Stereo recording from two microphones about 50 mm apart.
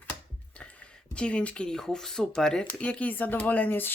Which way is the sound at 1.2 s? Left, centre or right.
Left.